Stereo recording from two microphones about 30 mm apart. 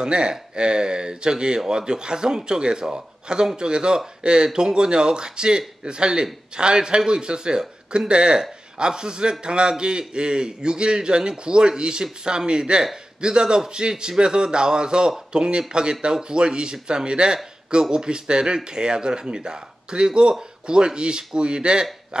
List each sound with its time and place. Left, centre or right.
0.0 s a man's voice: right
22.1 s hiccup: right